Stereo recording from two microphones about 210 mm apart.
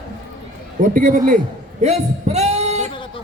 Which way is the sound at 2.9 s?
25° left (ahead or behind).